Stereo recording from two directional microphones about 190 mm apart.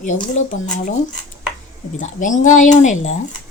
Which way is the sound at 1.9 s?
40° left (ahead or behind).